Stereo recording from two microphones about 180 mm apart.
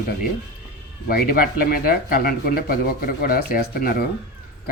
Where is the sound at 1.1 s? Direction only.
55° left (ahead or behind).